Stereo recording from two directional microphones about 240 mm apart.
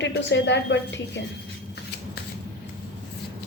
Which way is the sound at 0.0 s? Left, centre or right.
Left.